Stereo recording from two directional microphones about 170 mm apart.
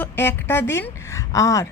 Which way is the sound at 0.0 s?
15° left (ahead or behind).